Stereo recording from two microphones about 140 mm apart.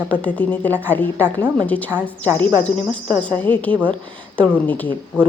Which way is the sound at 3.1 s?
10° left (ahead or behind).